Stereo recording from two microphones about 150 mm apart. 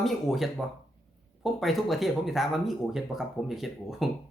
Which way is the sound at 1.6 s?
Centre (ahead or behind).